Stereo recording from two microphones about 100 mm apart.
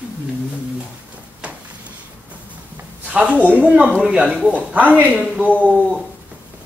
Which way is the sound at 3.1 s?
15° right (ahead or behind).